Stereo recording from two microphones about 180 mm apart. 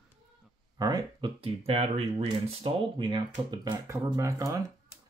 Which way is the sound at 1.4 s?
35° right (ahead or behind).